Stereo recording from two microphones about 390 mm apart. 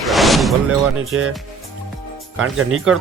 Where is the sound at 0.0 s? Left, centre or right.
Centre.